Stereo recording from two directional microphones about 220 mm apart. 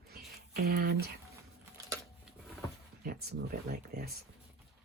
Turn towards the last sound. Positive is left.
turn(degrees=-45)  # may be behind; listen again after turning